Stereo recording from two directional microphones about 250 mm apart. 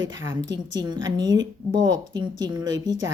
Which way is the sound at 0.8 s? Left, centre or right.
Centre.